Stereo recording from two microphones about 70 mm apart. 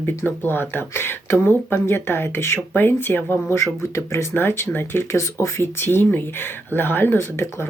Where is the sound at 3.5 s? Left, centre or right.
Left.